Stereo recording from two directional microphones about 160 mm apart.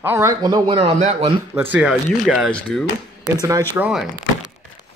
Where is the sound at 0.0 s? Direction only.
20° right (ahead or behind); by 1.3 s 40° right (ahead or behind).